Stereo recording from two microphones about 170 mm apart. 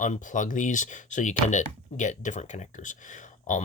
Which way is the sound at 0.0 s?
50° left (ahead or behind).